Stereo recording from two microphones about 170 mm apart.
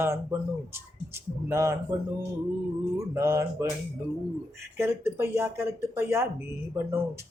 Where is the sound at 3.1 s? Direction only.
15° right (ahead or behind).